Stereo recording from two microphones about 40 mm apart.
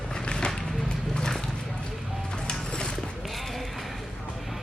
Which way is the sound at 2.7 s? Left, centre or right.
Centre.